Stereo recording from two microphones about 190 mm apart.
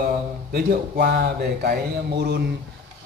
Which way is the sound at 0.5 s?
50° right (ahead or behind).